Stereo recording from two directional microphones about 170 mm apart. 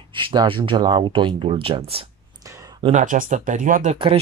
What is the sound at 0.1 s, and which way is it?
Speech, 25° right (ahead or behind).